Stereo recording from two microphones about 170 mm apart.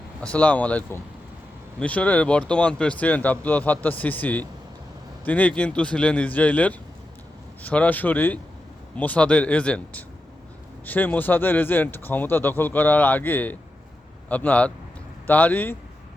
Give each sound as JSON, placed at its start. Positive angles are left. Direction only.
{"t": 0.2, "sound": "speech", "side_deg": 5}